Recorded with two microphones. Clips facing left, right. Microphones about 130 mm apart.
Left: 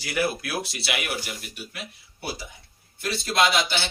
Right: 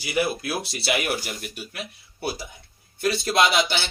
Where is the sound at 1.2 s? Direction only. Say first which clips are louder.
Right 3 dB; 45° right (ahead or behind).